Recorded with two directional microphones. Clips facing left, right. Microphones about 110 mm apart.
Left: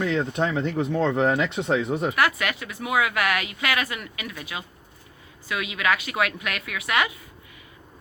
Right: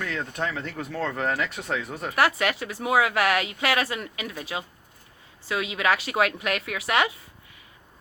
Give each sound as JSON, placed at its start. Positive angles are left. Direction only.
{"t": 0.0, "sound": "speech", "side_deg": 20}
{"t": 2.1, "sound": "a woman's voice", "side_deg": -35}